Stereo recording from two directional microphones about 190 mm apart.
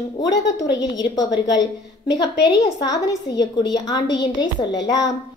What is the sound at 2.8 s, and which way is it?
A woman's voice, 20° left (ahead or behind).